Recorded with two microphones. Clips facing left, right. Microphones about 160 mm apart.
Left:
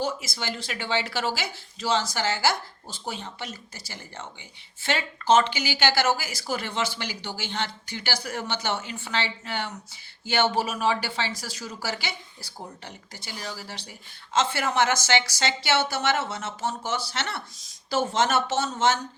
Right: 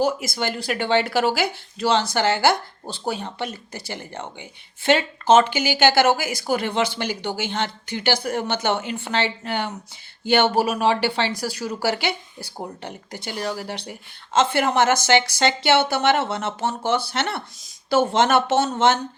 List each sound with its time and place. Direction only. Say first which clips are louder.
0.0 s speech: right 7 dB; 65° right (ahead or behind)